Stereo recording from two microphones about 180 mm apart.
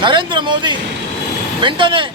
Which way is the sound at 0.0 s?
25° right (ahead or behind).